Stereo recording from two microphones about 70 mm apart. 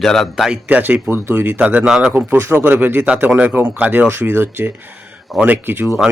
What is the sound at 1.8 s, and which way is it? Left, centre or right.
Speech, centre.